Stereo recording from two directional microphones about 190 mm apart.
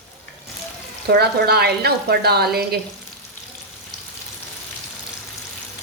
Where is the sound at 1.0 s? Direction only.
60° right (ahead or behind).